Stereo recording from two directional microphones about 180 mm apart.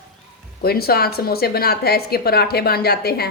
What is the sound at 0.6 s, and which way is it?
Speech, 60° left (ahead or behind).